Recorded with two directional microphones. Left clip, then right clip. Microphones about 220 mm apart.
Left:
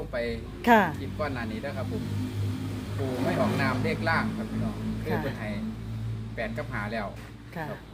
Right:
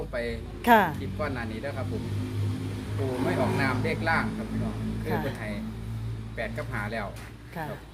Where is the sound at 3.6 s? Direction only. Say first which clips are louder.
Even; centre (ahead or behind).